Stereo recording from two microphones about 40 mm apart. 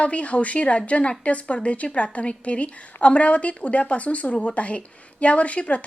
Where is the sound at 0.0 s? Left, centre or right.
Left.